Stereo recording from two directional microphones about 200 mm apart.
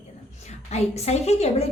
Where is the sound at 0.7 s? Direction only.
35° left (ahead or behind).